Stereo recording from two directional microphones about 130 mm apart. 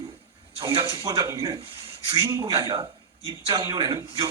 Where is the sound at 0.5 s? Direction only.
45° right (ahead or behind).